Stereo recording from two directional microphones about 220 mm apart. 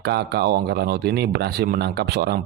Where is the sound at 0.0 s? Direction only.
50° right (ahead or behind).